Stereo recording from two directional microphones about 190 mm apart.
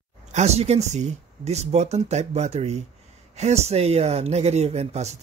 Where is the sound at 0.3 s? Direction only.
35° right (ahead or behind).